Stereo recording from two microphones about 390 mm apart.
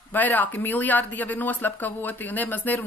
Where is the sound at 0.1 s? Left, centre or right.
Centre.